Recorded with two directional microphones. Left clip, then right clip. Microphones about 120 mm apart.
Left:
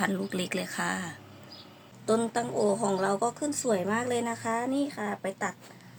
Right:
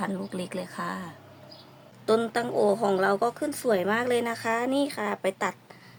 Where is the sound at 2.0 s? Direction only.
40° right (ahead or behind); by 5.5 s 90° right.